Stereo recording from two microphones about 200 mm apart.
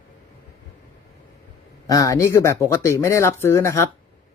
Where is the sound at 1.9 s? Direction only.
15° left (ahead or behind).